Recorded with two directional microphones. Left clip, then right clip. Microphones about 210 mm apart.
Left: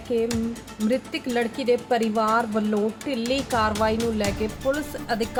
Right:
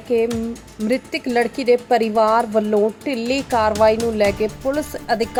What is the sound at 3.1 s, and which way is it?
Speech, 15° left (ahead or behind).